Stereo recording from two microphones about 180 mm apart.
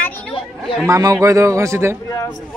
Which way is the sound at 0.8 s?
15° right (ahead or behind).